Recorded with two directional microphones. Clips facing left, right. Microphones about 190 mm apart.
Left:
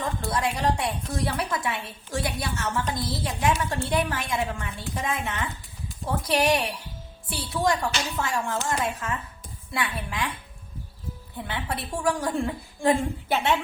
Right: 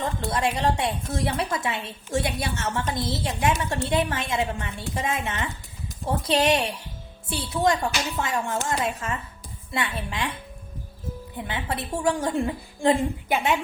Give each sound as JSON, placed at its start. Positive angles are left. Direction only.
{"t": 0.0, "sound": "a woman's voice", "side_deg": -25}
{"t": 11.3, "sound": "a woman's voice", "side_deg": -20}